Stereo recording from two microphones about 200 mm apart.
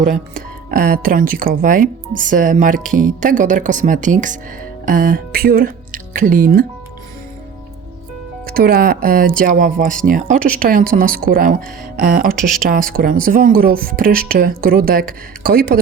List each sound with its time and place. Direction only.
0.0 s speech: 45° right (ahead or behind)
8.4 s speech: 50° right (ahead or behind)